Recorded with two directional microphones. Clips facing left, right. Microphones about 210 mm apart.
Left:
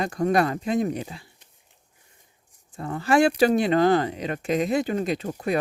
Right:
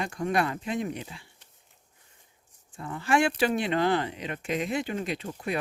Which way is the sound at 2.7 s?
40° left (ahead or behind).